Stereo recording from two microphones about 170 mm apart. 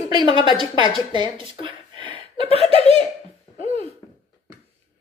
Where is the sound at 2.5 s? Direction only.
35° right (ahead or behind).